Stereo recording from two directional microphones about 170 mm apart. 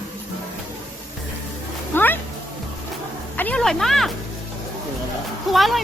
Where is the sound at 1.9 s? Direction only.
10° left (ahead or behind).